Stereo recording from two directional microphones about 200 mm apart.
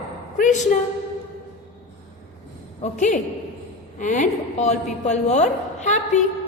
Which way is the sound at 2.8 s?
35° left (ahead or behind).